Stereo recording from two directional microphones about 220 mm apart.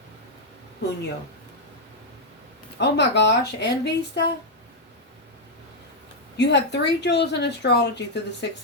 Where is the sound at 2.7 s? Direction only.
50° left (ahead or behind).